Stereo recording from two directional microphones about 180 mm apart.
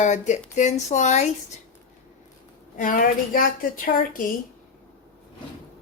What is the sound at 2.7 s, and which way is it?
A woman's voice, 50° left (ahead or behind).